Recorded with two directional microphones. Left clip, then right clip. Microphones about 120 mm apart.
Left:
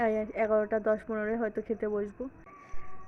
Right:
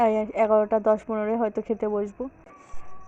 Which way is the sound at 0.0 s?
25° right (ahead or behind).